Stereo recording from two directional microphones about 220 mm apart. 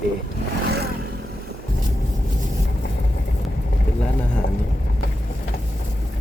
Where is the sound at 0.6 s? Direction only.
45° right (ahead or behind).